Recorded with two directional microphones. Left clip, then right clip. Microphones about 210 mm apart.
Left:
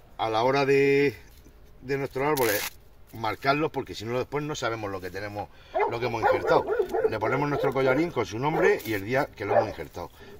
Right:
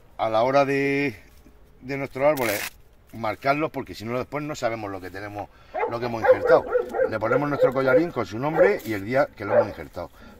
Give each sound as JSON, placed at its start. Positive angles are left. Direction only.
{"t": 0.2, "sound": "speech", "side_deg": -35}
{"t": 2.3, "sound": "speech", "side_deg": -15}
{"t": 3.2, "sound": "speech", "side_deg": -35}